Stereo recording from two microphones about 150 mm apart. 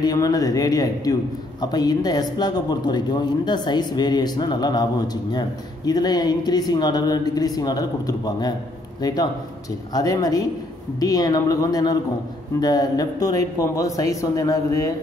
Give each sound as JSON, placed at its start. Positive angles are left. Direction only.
{"t": 0.0, "sound": "speech", "side_deg": 25}